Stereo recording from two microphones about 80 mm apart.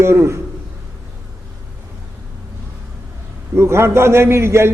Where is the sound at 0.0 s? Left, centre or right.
Right.